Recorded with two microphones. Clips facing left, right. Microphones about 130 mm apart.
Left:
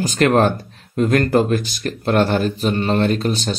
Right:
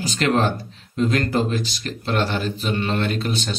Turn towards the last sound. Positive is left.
turn(degrees=40)  # may be behind; listen again after turning